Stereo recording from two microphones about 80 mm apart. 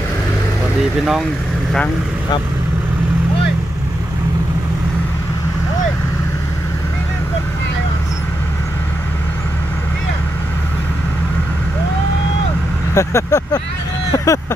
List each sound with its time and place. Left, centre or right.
12.9 s speech: left